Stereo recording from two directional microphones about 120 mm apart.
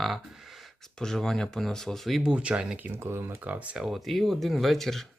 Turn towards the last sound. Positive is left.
turn(degrees=0)  # may be behind; listen again after turning